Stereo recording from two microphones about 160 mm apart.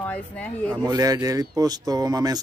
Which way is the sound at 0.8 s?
25° right (ahead or behind).